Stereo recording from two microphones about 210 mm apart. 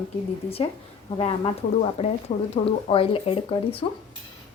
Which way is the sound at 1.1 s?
25° left (ahead or behind).